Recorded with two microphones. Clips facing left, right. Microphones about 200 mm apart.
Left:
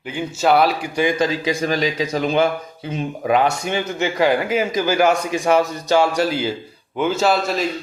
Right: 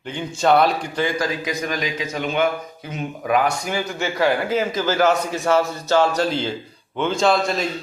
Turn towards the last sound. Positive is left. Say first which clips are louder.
# even
turn(degrees=5)  # may be behind; listen again after turning